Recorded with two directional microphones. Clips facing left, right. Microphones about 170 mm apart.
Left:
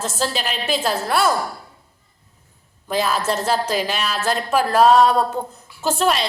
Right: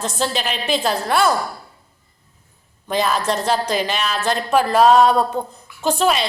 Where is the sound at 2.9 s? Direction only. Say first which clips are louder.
Right 1 dB; 5° left (ahead or behind).